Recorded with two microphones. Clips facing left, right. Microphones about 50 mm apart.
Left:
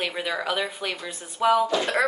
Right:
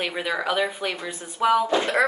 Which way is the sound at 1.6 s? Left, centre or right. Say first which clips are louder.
Right 2 dB; right.